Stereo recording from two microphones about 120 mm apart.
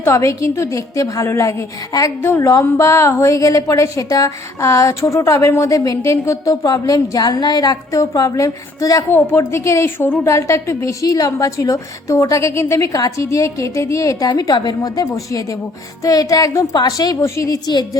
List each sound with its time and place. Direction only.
0.0 s a woman's voice: 25° left (ahead or behind)